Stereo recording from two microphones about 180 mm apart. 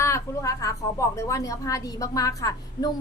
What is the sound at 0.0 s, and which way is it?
A woman's voice, 15° left (ahead or behind).